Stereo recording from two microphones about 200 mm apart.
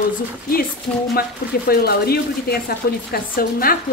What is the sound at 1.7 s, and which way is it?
A woman's voice, 50° left (ahead or behind).